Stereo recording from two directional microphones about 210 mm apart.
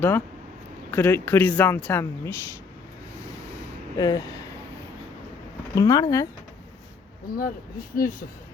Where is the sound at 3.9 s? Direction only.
20° left (ahead or behind).